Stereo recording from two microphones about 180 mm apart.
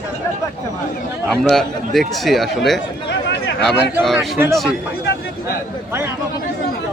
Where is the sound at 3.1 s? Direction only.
70° left (ahead or behind).